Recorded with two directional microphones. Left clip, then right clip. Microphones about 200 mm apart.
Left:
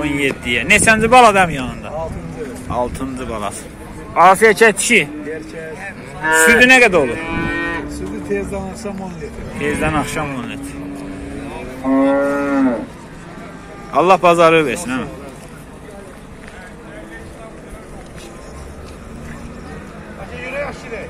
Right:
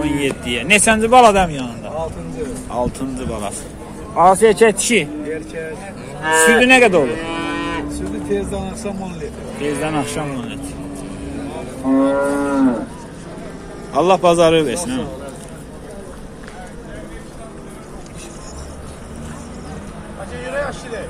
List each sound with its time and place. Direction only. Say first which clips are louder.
0.0 s speech: left 1 dB; centre (ahead or behind)
6.2 s speech: left 1 dB; 30° left (ahead or behind)
6.6 s speech: left 2 dB; 5° left (ahead or behind)
7.0 s moo: left 1 dB; 35° left (ahead or behind)
8.1 s speech: even; 15° left (ahead or behind)
9.6 s speech: left 2 dB; centre (ahead or behind)
11.9 s livestock: left 1 dB; 15° right (ahead or behind)
13.9 s speech: left 2 dB; centre (ahead or behind)
20.4 s a sound: right 1 dB; 35° left (ahead or behind)